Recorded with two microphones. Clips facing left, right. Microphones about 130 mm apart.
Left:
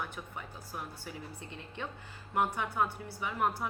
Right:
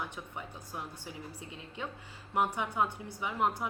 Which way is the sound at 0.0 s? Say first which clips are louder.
Even; 20° right (ahead or behind).